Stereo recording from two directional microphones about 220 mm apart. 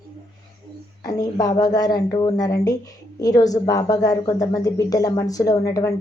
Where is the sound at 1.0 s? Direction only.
15° left (ahead or behind).